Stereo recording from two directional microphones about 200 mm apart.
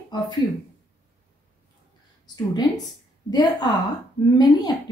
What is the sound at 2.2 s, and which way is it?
A woman's voice, 20° left (ahead or behind).